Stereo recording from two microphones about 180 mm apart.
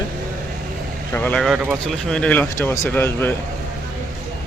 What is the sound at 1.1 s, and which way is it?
Speech, 10° left (ahead or behind).